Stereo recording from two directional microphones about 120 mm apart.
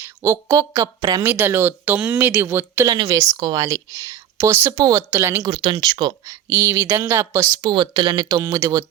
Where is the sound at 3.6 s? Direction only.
25° right (ahead or behind).